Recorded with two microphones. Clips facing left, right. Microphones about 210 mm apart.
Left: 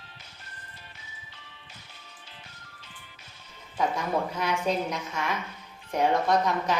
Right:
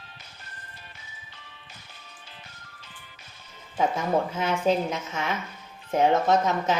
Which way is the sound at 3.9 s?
25° right (ahead or behind).